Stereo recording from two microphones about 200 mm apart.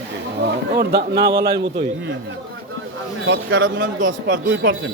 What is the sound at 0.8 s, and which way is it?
A man's voice, 50° right (ahead or behind).